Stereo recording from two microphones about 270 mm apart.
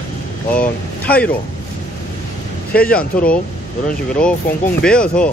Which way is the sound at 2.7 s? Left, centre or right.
Centre.